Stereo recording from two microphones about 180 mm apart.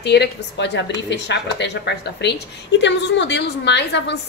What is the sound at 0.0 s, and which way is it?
A woman's voice, 70° left (ahead or behind).